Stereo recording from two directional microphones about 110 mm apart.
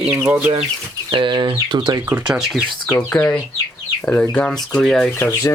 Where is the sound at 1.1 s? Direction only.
45° right (ahead or behind).